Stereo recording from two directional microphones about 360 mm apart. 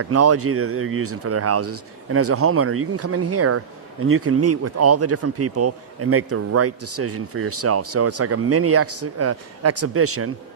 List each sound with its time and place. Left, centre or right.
0.0 s speech: right